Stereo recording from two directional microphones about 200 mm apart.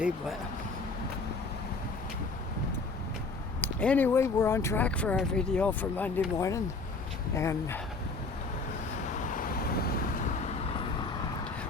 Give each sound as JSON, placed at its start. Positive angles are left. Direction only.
{"t": 3.6, "sound": "speech", "side_deg": 10}
{"t": 9.1, "sound": "vehicle", "side_deg": 45}